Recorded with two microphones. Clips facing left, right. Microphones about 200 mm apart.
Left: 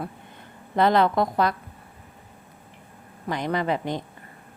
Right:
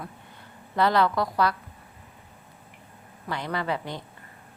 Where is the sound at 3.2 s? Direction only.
20° left (ahead or behind).